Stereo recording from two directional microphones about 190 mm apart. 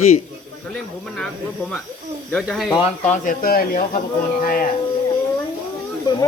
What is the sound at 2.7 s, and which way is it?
Speech, 35° left (ahead or behind).